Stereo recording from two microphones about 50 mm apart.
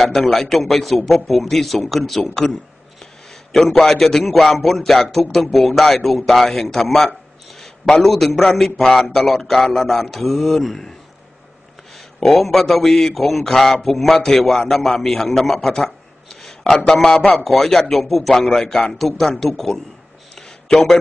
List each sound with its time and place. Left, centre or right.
0.0 s a man's voice: centre
3.5 s a man's voice: centre
12.2 s a man's voice: centre
18.4 s a man's voice: centre
20.3 s a sound: centre